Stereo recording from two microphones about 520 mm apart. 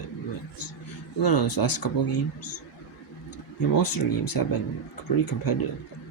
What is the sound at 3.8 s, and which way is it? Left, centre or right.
Speech, left.